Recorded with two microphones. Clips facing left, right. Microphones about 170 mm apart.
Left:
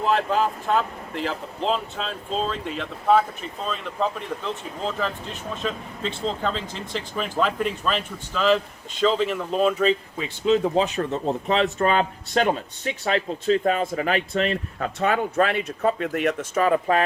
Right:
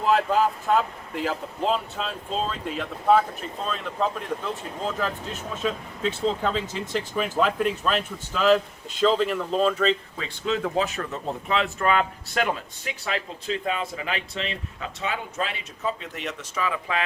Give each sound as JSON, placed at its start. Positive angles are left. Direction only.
{"t": 0.0, "sound": "speech", "side_deg": -5}
{"t": 10.4, "sound": "speech", "side_deg": 25}